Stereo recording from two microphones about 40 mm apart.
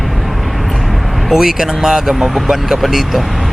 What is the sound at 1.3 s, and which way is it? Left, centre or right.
Speech, centre.